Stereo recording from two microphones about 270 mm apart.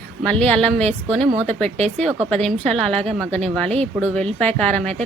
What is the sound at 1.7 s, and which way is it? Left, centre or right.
Speech, right.